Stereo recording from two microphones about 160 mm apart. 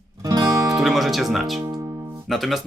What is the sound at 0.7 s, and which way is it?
Speech, centre (ahead or behind).